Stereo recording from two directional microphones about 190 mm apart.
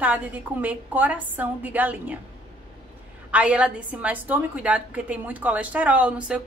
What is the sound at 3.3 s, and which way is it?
A woman's voice, 5° right (ahead or behind).